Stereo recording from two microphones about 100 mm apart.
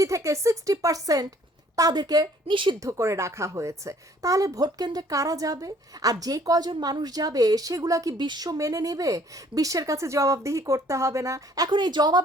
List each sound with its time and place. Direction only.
0.0 s a woman's voice: 30° right (ahead or behind)
2.5 s speech: 55° right (ahead or behind)
2.8 s a woman's voice: 30° right (ahead or behind)
11.7 s a woman's voice: 50° right (ahead or behind)